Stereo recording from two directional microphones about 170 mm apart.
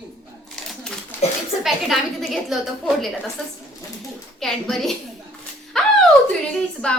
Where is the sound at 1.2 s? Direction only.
40° left (ahead or behind).